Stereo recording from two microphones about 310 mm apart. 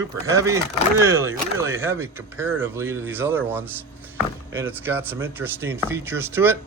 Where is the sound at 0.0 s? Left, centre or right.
Centre.